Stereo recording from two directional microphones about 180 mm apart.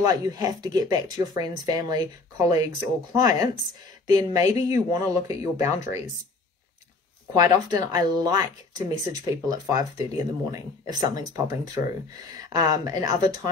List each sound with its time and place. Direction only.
0.0 s speech: 20° right (ahead or behind)
7.3 s speech: 20° right (ahead or behind)